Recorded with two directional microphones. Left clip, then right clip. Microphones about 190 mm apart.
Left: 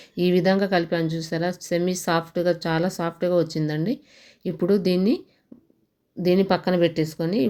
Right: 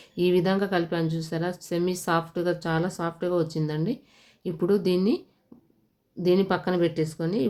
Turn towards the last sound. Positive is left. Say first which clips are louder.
# left 3 dB
turn(degrees=15)  # may be behind; listen again after turning